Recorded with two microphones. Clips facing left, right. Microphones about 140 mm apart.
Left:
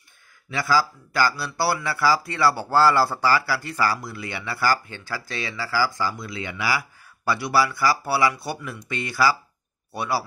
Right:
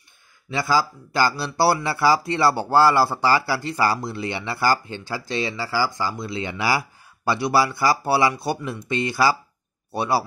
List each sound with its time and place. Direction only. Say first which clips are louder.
0.5 s speech: right 1 dB; 20° right (ahead or behind)